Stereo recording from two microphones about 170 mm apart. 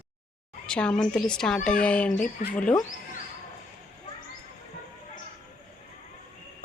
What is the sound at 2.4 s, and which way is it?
Speech, 50° left (ahead or behind).